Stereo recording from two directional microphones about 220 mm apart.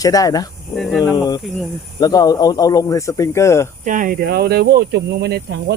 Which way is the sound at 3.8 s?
35° right (ahead or behind).